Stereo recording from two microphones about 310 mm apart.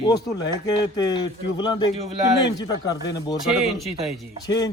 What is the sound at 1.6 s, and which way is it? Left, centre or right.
Speech, centre.